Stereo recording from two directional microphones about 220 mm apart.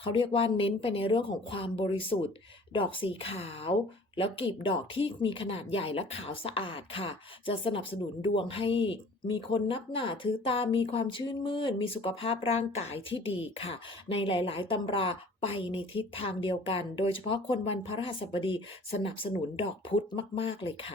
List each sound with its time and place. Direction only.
0.0 s speech: 25° left (ahead or behind)